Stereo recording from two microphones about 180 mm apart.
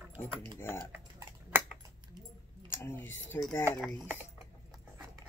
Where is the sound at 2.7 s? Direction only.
15° left (ahead or behind).